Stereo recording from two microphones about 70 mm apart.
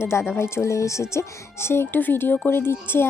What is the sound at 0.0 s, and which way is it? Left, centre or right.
Speech, left.